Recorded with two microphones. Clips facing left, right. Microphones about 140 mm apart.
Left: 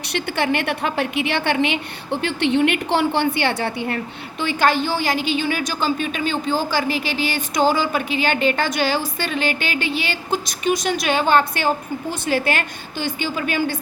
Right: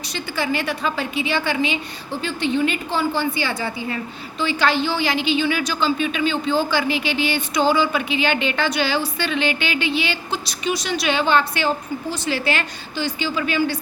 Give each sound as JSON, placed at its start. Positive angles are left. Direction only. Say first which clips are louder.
{"t": 0.1, "sound": "a woman's voice", "louder": "left 3 dB", "side_deg": 65}